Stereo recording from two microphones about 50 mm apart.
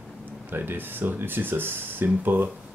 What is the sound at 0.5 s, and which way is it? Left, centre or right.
Speech, right.